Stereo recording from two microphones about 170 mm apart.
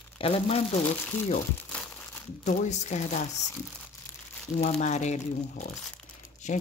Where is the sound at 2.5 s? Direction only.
45° left (ahead or behind).